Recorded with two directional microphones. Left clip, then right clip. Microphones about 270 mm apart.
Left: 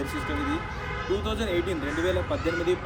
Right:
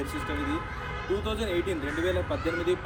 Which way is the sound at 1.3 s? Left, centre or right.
Centre.